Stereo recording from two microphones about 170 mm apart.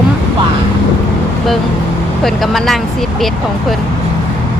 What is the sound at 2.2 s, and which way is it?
Speech, centre (ahead or behind).